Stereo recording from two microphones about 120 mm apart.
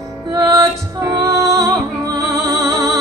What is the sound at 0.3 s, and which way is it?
Music, 30° right (ahead or behind).